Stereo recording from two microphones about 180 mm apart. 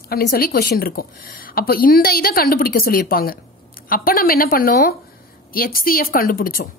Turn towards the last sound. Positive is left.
turn(degrees=55)  # may be behind; listen again after turning